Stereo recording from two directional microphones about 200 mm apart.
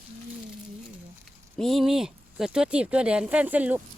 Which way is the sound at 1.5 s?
Centre (ahead or behind).